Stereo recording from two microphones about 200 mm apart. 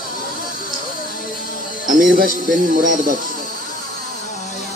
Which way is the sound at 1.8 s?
45° right (ahead or behind).